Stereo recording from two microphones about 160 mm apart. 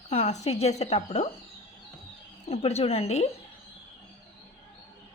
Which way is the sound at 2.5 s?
40° left (ahead or behind).